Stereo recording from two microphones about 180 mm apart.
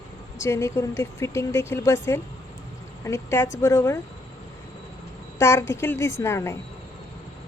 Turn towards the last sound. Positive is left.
turn(degrees=15)  # may be behind; listen again after turning